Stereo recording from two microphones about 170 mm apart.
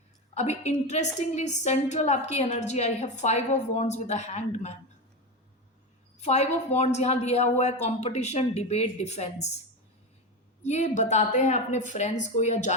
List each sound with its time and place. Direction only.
0.3 s a woman's voice: 40° left (ahead or behind)
6.2 s a woman's voice: 40° left (ahead or behind)
10.6 s a woman's voice: 40° left (ahead or behind)